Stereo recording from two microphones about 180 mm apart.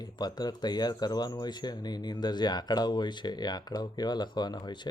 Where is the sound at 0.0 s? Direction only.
20° left (ahead or behind).